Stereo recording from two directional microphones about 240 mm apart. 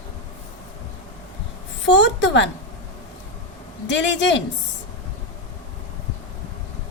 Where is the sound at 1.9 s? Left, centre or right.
Left.